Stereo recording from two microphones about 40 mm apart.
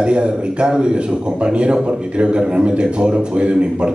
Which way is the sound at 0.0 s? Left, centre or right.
Right.